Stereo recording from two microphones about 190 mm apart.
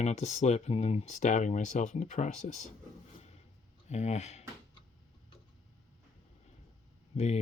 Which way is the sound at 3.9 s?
35° left (ahead or behind).